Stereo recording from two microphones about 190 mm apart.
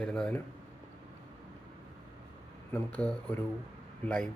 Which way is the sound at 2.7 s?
5° left (ahead or behind).